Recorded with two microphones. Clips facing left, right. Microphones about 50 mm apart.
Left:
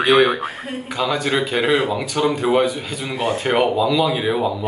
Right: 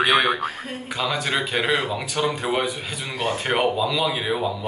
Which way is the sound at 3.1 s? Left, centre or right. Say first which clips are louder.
Left 4 dB; left.